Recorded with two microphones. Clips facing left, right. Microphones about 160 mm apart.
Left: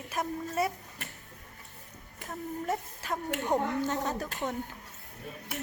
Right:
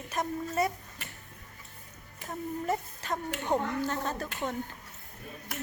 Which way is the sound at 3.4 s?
15° left (ahead or behind).